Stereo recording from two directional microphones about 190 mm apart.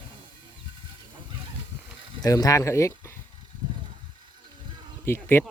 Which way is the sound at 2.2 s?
20° left (ahead or behind).